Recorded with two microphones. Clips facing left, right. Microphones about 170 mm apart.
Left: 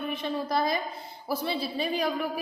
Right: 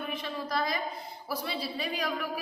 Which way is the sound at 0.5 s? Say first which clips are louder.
Left 2 dB; 25° left (ahead or behind).